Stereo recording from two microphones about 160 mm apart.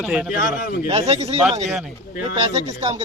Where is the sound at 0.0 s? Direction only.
5° right (ahead or behind).